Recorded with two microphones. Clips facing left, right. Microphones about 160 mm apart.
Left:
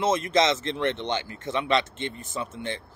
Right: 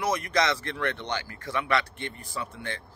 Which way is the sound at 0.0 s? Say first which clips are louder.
Left 4 dB; 25° left (ahead or behind).